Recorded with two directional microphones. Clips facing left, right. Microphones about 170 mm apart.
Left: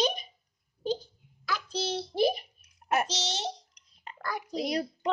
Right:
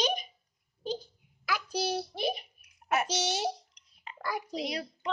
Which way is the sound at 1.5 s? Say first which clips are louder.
Right 1 dB; 10° right (ahead or behind).